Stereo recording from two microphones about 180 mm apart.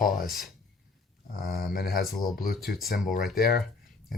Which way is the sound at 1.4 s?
55° left (ahead or behind).